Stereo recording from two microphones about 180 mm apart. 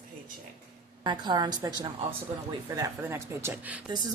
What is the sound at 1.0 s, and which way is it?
A woman's voice, 25° right (ahead or behind).